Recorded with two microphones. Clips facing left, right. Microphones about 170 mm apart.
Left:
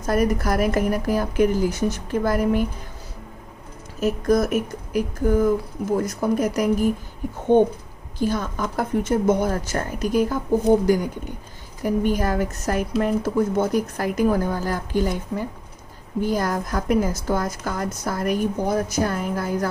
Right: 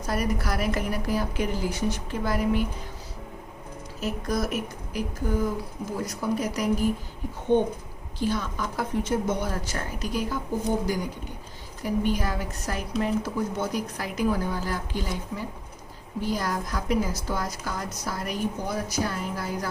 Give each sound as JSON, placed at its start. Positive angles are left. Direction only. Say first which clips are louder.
{"t": 0.0, "sound": "a woman's voice", "louder": "left 7 dB", "side_deg": 45}
{"t": 4.0, "sound": "a woman's voice", "louder": "left 9 dB", "side_deg": 50}
{"t": 8.2, "sound": "a woman's voice", "louder": "left 4 dB", "side_deg": 45}
{"t": 11.8, "sound": "a woman's voice", "louder": "left 5 dB", "side_deg": 50}